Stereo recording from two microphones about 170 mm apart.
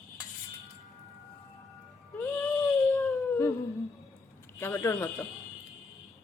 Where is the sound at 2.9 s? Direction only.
15° left (ahead or behind).